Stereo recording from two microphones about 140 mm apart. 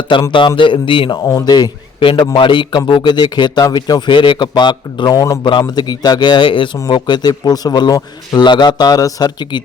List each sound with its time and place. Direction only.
0.1 s a man's voice: 35° left (ahead or behind)